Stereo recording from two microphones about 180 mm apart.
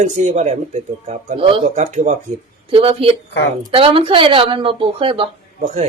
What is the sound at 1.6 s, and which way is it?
Speech, 40° right (ahead or behind).